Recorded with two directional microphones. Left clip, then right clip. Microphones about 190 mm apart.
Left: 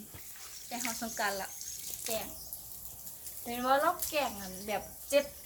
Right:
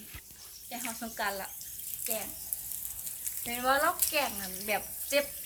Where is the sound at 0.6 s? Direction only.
Centre (ahead or behind).